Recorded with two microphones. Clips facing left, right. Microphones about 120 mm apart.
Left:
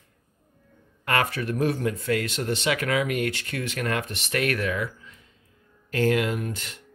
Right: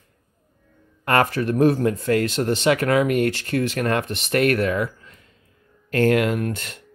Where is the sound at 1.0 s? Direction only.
40° right (ahead or behind).